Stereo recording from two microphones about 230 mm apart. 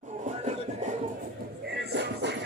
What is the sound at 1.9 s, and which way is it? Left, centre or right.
Music, right.